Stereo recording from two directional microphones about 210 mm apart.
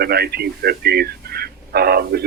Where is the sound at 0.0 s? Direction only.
50° right (ahead or behind).